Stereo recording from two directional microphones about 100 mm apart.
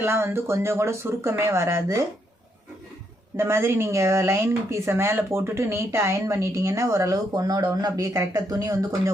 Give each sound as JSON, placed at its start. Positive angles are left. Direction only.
{"t": 0.0, "sound": "speech", "side_deg": -25}
{"t": 3.3, "sound": "speech", "side_deg": -25}